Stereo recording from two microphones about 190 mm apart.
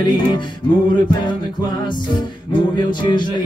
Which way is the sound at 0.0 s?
25° left (ahead or behind).